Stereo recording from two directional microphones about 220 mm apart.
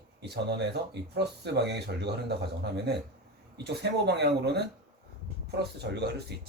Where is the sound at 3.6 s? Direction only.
50° right (ahead or behind).